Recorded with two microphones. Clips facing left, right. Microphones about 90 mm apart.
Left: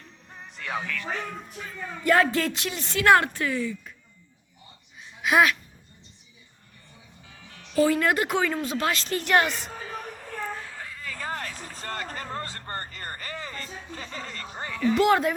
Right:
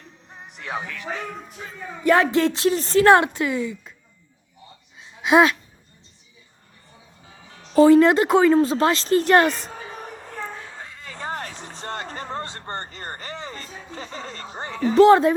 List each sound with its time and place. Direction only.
0.3 s music: 15° right (ahead or behind)
1.5 s speech: 20° right (ahead or behind); by 3.2 s 35° right (ahead or behind)
3.2 s speech: 20° right (ahead or behind)
5.2 s speech: 25° right (ahead or behind)
7.3 s music: 30° right (ahead or behind)